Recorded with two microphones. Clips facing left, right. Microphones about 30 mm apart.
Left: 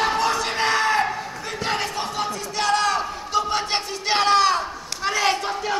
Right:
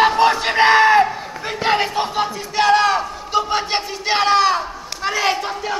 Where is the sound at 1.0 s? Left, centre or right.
Centre.